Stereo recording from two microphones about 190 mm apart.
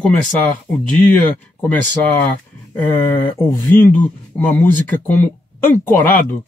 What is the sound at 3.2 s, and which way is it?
Speech, 25° left (ahead or behind).